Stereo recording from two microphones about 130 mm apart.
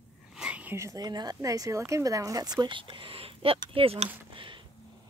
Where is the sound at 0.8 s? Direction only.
30° right (ahead or behind); by 4.0 s 45° right (ahead or behind).